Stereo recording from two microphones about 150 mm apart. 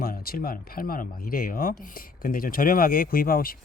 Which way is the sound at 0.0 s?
80° left.